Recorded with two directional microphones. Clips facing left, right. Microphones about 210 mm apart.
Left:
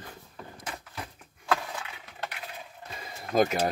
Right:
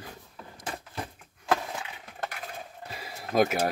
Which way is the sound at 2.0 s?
45° right (ahead or behind).